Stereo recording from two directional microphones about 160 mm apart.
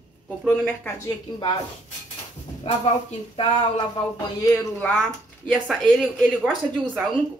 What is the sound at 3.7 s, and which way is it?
Speech, 25° left (ahead or behind).